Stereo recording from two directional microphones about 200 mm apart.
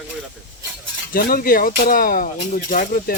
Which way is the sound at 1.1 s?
50° left (ahead or behind).